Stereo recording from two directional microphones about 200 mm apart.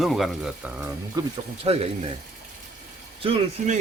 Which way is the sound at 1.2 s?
20° right (ahead or behind).